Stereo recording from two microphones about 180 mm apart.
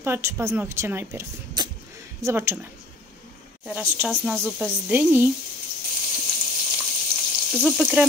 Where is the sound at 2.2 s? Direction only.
15° right (ahead or behind).